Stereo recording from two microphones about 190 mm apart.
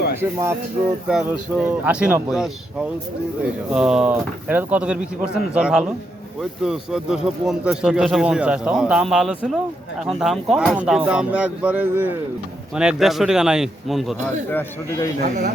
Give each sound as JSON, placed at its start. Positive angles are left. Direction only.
{"t": 0.2, "sound": "speech", "side_deg": -15}
{"t": 14.5, "sound": "speech", "side_deg": 15}